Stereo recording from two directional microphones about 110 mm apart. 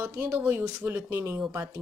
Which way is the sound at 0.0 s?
20° right (ahead or behind).